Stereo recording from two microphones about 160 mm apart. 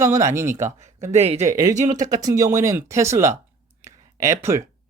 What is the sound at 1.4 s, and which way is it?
Speech, 20° right (ahead or behind).